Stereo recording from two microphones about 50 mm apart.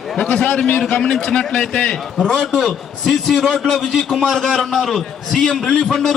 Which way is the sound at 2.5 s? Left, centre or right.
Centre.